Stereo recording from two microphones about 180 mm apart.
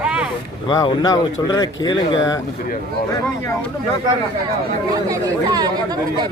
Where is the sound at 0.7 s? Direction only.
20° left (ahead or behind).